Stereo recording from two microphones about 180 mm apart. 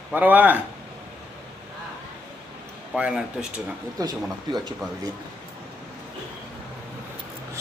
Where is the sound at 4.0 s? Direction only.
20° right (ahead or behind).